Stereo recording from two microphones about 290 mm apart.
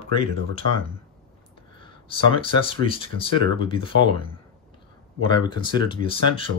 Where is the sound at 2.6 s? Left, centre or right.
Centre.